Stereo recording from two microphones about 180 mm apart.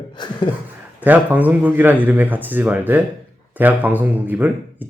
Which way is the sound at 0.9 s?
10° right (ahead or behind).